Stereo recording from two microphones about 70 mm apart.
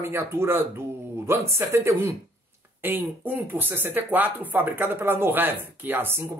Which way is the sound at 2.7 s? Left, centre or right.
Right.